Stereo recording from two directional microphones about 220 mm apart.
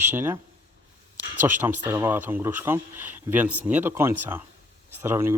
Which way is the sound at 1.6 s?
10° right (ahead or behind).